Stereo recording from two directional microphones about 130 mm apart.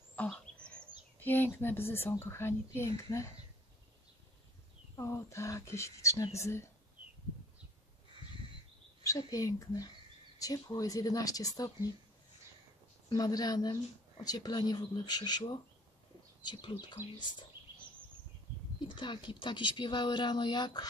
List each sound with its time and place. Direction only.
0.1 s a sound: 10° left (ahead or behind)
1.2 s speech: 15° left (ahead or behind)
4.9 s speech: 25° left (ahead or behind)
9.0 s speech: 25° left (ahead or behind)
13.1 s speech: 30° left (ahead or behind)
16.8 s speech: 35° left (ahead or behind)
18.9 s speech: 35° left (ahead or behind)